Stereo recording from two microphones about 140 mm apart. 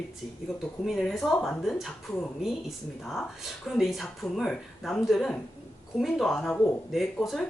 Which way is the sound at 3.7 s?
Centre (ahead or behind).